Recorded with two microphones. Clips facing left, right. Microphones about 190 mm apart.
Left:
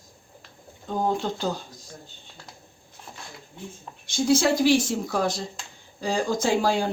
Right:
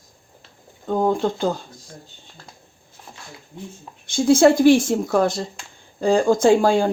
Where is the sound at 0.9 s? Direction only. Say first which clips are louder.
Right 6 dB; 55° right (ahead or behind).